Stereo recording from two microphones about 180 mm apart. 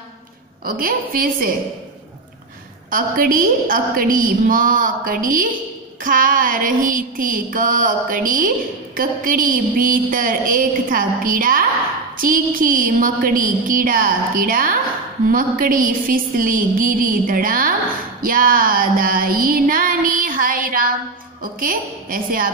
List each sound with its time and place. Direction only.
0.7 s carnatic music: 50° right (ahead or behind)
2.9 s carnatic music: 50° right (ahead or behind)
18.2 s music: 50° right (ahead or behind)
21.4 s carnatic music: 50° right (ahead or behind)